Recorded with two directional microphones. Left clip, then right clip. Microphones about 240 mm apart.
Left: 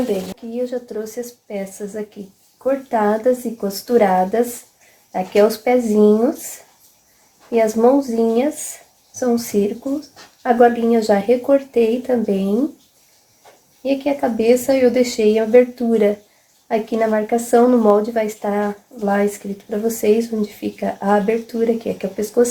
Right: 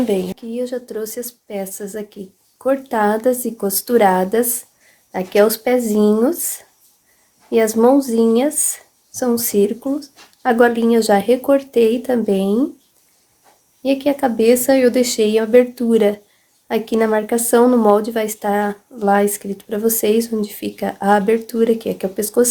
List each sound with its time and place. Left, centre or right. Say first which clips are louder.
0.5 s speech: left 1 dB; right
7.5 s speech: right 1 dB; right
13.8 s speech: right 2 dB; right